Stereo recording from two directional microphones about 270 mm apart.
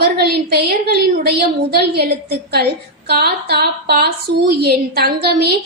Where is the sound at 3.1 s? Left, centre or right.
Right.